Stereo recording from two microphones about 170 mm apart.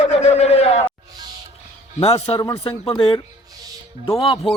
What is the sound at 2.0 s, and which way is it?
Speech, 35° left (ahead or behind).